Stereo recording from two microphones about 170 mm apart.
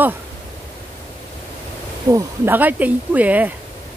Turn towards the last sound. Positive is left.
turn(degrees=-10)  # may be behind; listen again after turning